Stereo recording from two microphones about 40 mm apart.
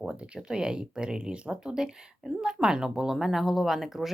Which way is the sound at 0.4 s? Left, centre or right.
Centre.